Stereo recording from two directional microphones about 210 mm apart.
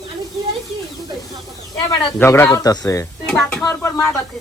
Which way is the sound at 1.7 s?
15° left (ahead or behind).